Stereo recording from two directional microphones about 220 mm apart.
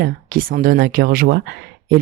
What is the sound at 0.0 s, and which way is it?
Speech, 40° right (ahead or behind).